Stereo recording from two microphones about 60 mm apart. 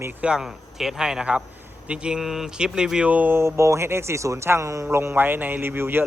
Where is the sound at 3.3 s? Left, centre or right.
Right.